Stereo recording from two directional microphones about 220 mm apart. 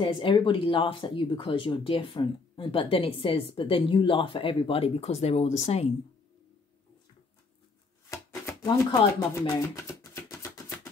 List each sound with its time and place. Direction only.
0.0 s speech: 25° left (ahead or behind)
8.1 s chopping: 15° left (ahead or behind)
9.3 s speech: 10° left (ahead or behind)
10.4 s music: 10° left (ahead or behind)